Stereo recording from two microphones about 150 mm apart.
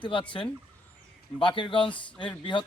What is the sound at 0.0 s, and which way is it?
A man's voice, 35° left (ahead or behind).